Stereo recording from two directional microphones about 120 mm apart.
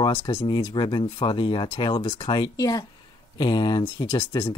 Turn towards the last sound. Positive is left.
turn(degrees=40)  # may be behind; listen again after turning